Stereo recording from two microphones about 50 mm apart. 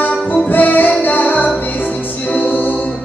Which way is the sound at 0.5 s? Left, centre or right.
Left.